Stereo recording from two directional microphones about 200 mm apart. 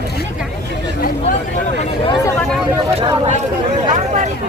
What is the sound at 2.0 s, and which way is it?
Speech, 20° left (ahead or behind).